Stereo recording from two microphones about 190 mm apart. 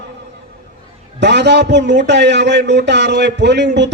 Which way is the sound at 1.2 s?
65° right (ahead or behind).